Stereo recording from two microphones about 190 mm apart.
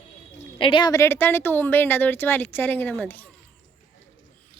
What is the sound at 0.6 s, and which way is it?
Speech, 25° left (ahead or behind).